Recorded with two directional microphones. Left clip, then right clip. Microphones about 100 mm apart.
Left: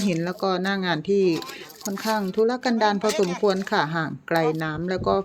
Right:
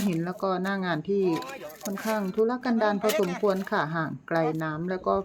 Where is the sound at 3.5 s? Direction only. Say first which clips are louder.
Left 4 dB; 35° left (ahead or behind).